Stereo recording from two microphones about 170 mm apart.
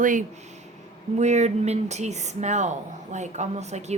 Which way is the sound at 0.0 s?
50° right (ahead or behind).